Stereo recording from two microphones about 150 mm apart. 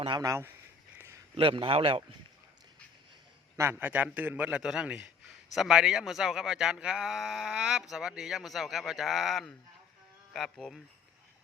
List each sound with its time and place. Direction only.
0.2 s speech: 20° right (ahead or behind)
0.9 s a sound: 15° right (ahead or behind)
1.4 s a man's voice: 35° right (ahead or behind)
3.6 s a man's voice: 15° right (ahead or behind); by 10.8 s centre (ahead or behind)